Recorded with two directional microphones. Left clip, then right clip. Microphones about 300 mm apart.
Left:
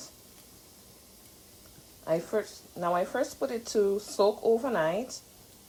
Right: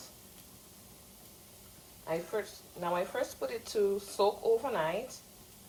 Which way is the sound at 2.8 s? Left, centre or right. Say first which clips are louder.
Left 5 dB; centre.